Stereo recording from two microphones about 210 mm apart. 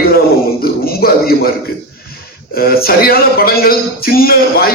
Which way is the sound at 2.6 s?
45° left (ahead or behind).